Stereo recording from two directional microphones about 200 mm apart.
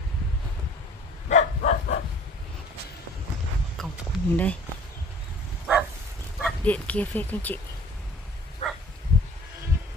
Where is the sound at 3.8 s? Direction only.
Centre (ahead or behind).